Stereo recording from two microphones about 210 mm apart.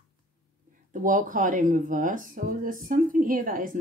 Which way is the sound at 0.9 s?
40° right (ahead or behind).